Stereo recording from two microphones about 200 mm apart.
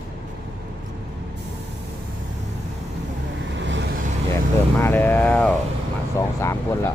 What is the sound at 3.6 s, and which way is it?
Vehicle, 65° right (ahead or behind).